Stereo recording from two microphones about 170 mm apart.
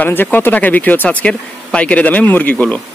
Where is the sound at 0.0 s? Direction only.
10° left (ahead or behind).